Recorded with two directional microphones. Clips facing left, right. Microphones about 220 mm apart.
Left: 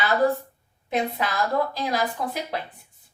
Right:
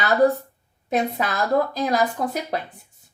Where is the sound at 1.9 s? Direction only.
45° right (ahead or behind).